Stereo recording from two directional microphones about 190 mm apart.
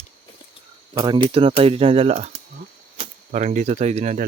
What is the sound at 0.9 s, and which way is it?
Speech, 25° right (ahead or behind).